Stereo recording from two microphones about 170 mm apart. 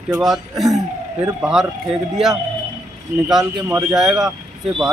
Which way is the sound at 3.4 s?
20° right (ahead or behind).